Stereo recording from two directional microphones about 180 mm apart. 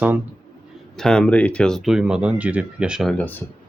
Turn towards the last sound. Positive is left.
turn(degrees=10)  # may be behind; listen again after turning